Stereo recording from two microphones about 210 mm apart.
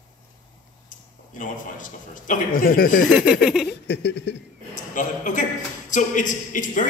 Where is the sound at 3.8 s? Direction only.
55° left (ahead or behind).